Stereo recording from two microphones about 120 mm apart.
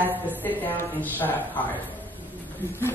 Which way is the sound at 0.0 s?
15° right (ahead or behind).